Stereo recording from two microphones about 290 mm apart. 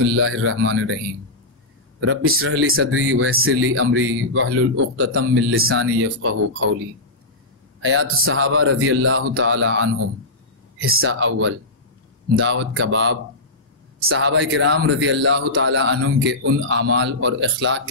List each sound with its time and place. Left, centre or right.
0.1 s speech: right
2.0 s speech: right
7.8 s speech: right
10.9 s a man's voice: right